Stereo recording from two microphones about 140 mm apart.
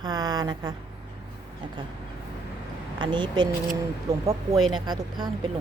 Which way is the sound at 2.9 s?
35° right (ahead or behind).